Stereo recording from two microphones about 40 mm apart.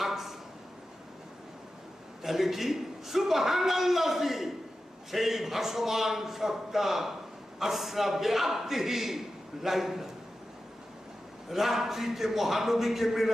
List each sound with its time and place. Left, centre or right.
0.0 s a sound: centre
2.2 s a man's voice: centre
11.4 s a man's voice: centre